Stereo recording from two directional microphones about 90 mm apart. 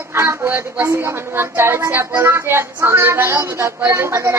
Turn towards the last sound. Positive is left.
turn(degrees=-35)  # may be behind; listen again after turning